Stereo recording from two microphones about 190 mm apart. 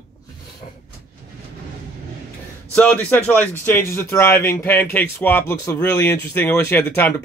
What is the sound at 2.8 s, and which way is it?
A man's voice, 10° left (ahead or behind).